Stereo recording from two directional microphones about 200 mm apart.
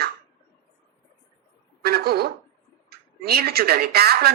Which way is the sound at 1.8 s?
50° right (ahead or behind).